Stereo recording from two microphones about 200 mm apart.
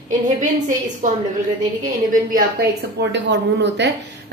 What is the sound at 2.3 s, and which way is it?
A woman's voice, 50° right (ahead or behind).